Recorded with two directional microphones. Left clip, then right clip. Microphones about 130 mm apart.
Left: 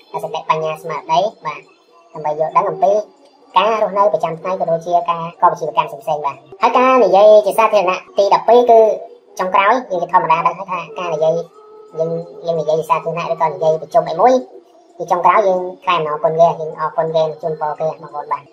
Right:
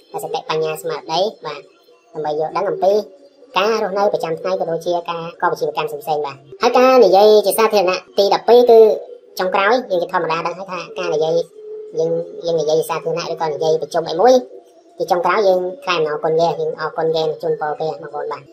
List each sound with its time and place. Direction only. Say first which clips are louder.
0.1 s a woman's voice: left 3 dB; 30° right (ahead or behind)